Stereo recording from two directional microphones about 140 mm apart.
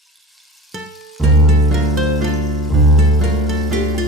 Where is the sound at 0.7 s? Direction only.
Centre (ahead or behind).